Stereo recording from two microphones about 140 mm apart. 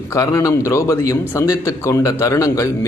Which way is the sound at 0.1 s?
20° left (ahead or behind).